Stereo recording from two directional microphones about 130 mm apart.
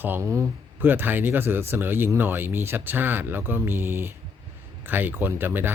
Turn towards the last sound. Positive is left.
turn(degrees=-15)  # may be behind; listen again after turning